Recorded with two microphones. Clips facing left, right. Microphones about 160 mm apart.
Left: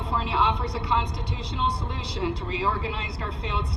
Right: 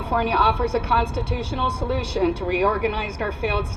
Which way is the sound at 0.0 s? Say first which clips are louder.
Right 5 dB; 70° right (ahead or behind).